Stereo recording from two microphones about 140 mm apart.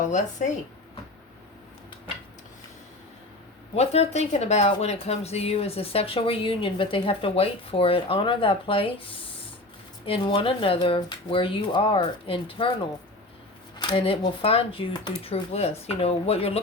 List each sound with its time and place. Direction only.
0.1 s speech: 60° left (ahead or behind)
3.8 s a woman's voice: 50° left (ahead or behind)
13.7 s speech: 35° left (ahead or behind)